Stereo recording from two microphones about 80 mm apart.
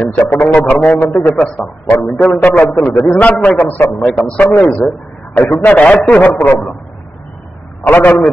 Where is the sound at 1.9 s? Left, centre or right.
Left.